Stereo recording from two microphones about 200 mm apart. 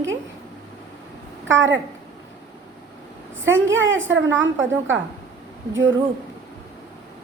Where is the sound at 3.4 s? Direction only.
70° right (ahead or behind).